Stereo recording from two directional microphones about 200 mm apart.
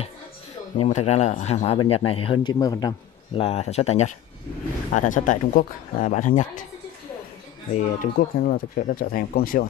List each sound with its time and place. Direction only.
0.8 s a man's voice: 35° left (ahead or behind)
7.7 s speech: 45° left (ahead or behind)